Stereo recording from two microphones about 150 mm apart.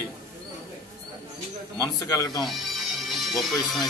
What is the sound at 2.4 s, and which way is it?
Music, centre (ahead or behind).